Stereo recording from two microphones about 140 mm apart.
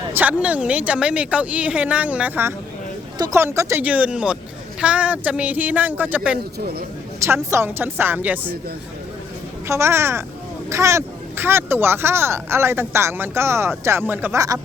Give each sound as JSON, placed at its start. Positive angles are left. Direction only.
{"t": 0.1, "sound": "speech", "side_deg": -10}
{"t": 7.5, "sound": "speech", "side_deg": -15}
{"t": 9.6, "sound": "speech", "side_deg": -20}